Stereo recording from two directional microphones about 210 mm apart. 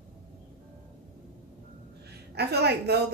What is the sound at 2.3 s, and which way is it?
Speech, 50° right (ahead or behind).